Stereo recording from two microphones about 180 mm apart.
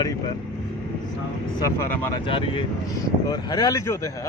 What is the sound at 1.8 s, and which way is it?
Speech, 15° left (ahead or behind).